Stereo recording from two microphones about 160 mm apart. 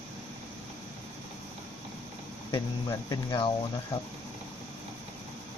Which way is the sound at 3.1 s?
25° left (ahead or behind).